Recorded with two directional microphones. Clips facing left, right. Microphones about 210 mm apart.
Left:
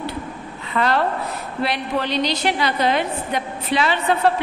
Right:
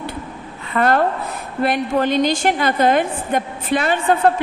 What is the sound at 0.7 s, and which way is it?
A woman's voice, 50° right (ahead or behind).